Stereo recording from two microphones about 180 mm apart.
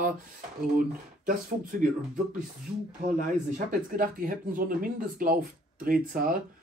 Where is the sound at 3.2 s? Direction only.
50° right (ahead or behind).